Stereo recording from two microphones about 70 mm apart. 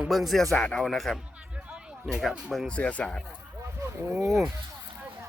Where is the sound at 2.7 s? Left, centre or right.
Centre.